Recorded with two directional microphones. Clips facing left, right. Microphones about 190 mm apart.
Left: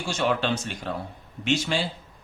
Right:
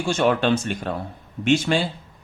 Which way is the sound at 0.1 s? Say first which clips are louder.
Right 6 dB; 55° right (ahead or behind).